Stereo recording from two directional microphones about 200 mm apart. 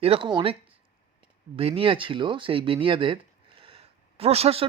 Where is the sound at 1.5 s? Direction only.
25° right (ahead or behind).